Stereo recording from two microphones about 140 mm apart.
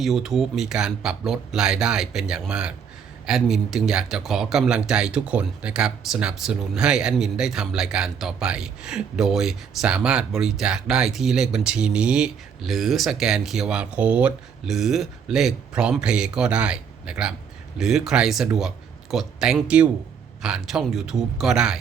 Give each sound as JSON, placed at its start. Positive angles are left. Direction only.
{"t": 0.0, "sound": "speech", "side_deg": 0}